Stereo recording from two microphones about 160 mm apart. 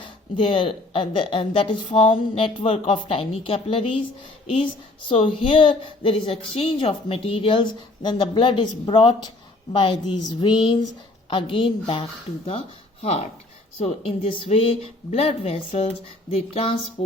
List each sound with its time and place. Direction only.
0.0 s a woman's voice: 30° left (ahead or behind)
5.0 s a woman's voice: 35° left (ahead or behind)